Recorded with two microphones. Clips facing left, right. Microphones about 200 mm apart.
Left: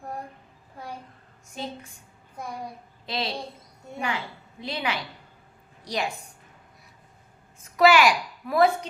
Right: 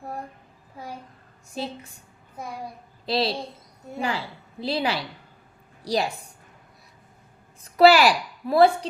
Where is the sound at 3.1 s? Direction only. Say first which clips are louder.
Right 6 dB; 35° right (ahead or behind).